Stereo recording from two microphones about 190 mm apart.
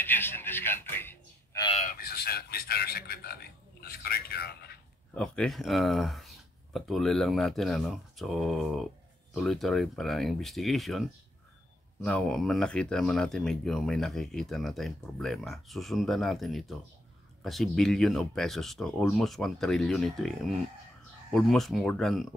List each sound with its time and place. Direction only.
0.0 s a man's voice: 10° left (ahead or behind)
1.8 s a man's voice: 50° left (ahead or behind)
5.1 s speech: 5° left (ahead or behind)